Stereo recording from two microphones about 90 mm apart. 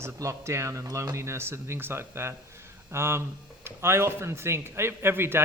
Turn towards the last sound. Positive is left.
turn(degrees=-25)  # may be behind; listen again after turning